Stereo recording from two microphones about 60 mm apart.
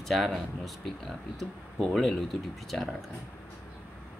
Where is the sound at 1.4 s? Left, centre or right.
Centre.